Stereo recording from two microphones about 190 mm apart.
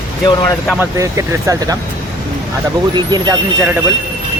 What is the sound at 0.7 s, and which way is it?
Speech, 15° right (ahead or behind).